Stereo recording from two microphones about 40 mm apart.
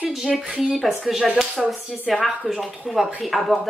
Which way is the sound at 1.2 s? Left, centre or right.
Centre.